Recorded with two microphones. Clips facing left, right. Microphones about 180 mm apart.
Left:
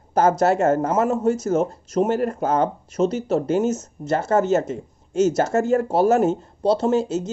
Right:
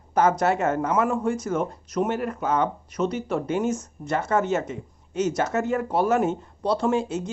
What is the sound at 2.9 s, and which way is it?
Speech, 25° left (ahead or behind).